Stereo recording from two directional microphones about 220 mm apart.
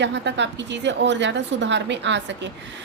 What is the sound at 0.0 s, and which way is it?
A woman's voice, 55° right (ahead or behind).